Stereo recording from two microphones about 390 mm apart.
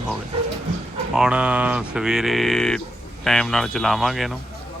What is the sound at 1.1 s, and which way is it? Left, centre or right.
Speech, centre.